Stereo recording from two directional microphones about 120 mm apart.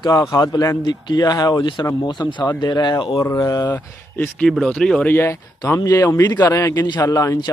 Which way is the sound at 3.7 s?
15° left (ahead or behind).